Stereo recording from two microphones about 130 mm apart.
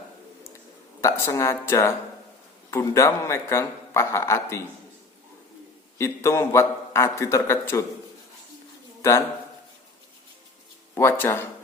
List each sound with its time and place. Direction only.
1.0 s a man's voice: 20° left (ahead or behind)
6.0 s a man's voice: 20° left (ahead or behind)
9.0 s bird: 20° left (ahead or behind)
10.9 s speech: 20° left (ahead or behind)